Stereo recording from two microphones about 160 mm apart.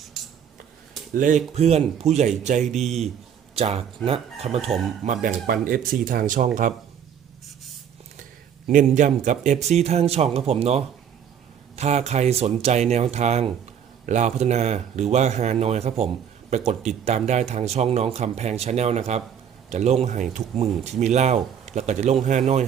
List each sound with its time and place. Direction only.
0.1 s cutlery: centre (ahead or behind)
1.1 s speech: 55° right (ahead or behind)
1.5 s speech: 40° right (ahead or behind)
5.0 s speech: 55° right (ahead or behind)
8.6 s speech: 50° right (ahead or behind)